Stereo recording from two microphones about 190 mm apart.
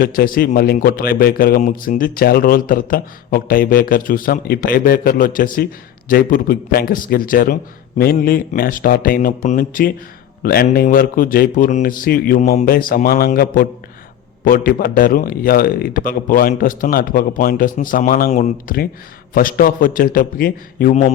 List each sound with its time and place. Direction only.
0.0 s a man's voice: 50° left (ahead or behind)